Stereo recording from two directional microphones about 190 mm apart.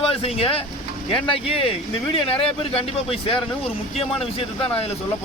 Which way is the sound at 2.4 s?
30° left (ahead or behind).